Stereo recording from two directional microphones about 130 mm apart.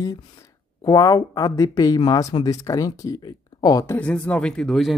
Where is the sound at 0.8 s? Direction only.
30° left (ahead or behind).